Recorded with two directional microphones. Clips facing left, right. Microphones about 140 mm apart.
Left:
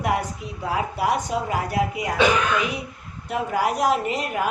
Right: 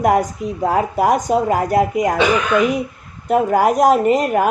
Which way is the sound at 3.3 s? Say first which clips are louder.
Right 9 dB; 45° right (ahead or behind).